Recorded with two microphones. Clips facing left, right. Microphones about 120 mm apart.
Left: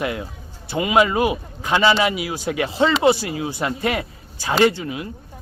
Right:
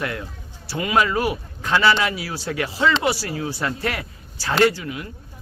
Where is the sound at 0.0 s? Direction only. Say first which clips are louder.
Left 3 dB; 20° left (ahead or behind).